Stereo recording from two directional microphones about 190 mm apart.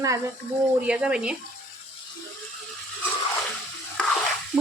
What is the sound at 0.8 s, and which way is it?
Speech, 5° right (ahead or behind).